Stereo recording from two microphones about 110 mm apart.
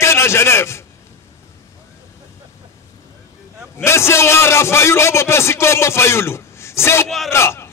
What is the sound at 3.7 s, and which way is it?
A man's voice, 25° left (ahead or behind).